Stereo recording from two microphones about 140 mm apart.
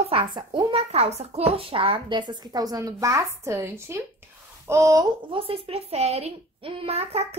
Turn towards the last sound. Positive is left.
turn(degrees=-45)  # may be behind; listen again after turning